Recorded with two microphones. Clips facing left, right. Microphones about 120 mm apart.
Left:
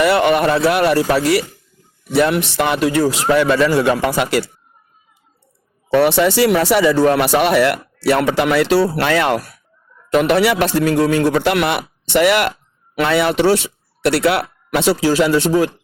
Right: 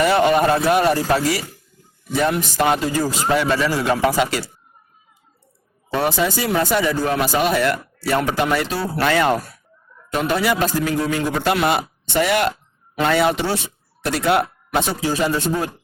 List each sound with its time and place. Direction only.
0.0 s speech: 70° left (ahead or behind)
2.1 s speech: 80° left; by 4.5 s 65° left (ahead or behind)
5.9 s speech: 70° left (ahead or behind); by 15.7 s 90° left